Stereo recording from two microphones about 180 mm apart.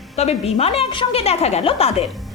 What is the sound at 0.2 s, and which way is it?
A woman's voice, 35° left (ahead or behind).